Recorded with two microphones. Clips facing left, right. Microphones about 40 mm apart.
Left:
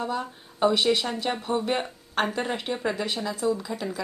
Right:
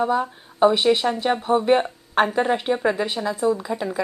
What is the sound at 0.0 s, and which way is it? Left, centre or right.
A woman's voice, centre.